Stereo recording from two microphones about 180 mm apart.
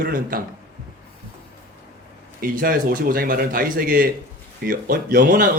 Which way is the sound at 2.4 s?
50° right (ahead or behind).